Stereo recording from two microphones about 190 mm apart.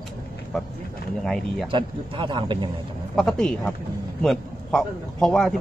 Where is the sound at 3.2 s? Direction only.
5° left (ahead or behind).